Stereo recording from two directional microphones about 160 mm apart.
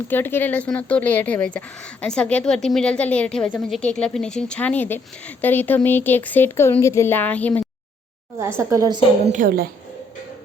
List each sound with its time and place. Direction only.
0.1 s a woman's voice: 15° left (ahead or behind)
8.4 s a woman's voice: 15° right (ahead or behind)
9.3 s a woman's voice: 55° right (ahead or behind)